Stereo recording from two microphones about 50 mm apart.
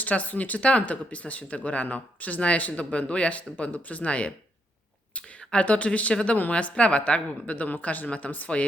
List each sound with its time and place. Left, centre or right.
0.0 s speech: left